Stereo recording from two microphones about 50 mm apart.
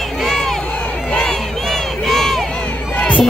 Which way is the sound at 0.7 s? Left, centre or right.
Left.